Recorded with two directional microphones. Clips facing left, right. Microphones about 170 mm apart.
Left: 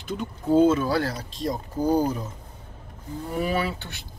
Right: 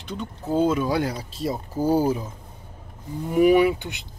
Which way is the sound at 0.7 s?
15° right (ahead or behind).